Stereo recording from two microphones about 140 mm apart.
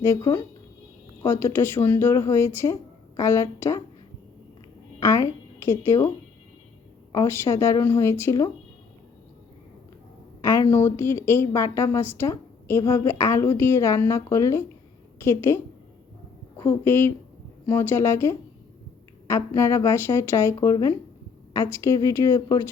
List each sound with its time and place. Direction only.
0.0 s a woman's voice: 25° left (ahead or behind)
4.9 s a sound: 20° left (ahead or behind)
5.8 s a woman's voice: 20° left (ahead or behind)
7.1 s a woman's voice: 20° left (ahead or behind)
10.4 s a woman's voice: 20° left (ahead or behind)